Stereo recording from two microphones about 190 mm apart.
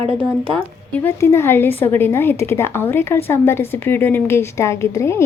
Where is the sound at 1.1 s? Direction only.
15° left (ahead or behind).